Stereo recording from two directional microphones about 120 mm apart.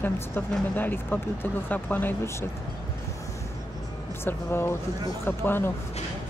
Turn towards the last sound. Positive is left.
turn(degrees=20)  # may be behind; listen again after turning